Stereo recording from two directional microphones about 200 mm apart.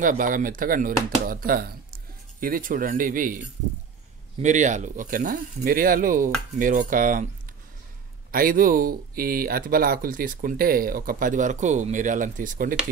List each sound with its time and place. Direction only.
0.0 s speech: 40° right (ahead or behind)
4.4 s speech: 35° right (ahead or behind)
8.3 s speech: 45° right (ahead or behind)